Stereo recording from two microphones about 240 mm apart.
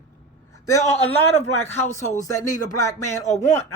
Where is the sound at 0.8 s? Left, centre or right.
Left.